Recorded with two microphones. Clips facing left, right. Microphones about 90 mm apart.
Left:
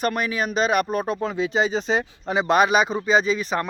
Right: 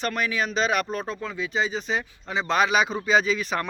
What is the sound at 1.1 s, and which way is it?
Speech, 70° left (ahead or behind).